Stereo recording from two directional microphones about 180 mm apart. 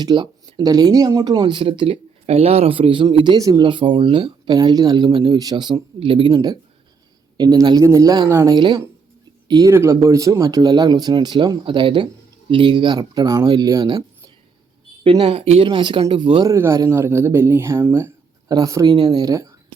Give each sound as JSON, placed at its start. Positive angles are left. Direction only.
{"t": 0.0, "sound": "speech", "side_deg": -25}
{"t": 15.0, "sound": "speech", "side_deg": -25}